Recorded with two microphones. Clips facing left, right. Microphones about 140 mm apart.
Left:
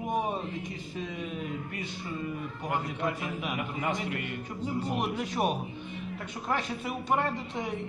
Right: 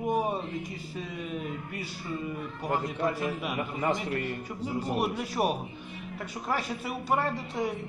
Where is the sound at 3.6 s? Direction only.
35° right (ahead or behind).